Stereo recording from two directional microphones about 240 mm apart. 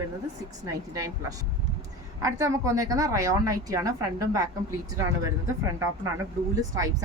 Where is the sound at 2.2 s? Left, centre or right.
Centre.